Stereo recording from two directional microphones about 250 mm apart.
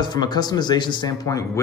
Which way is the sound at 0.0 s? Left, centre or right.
Centre.